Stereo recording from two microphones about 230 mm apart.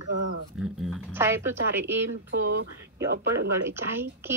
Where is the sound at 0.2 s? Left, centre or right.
Right.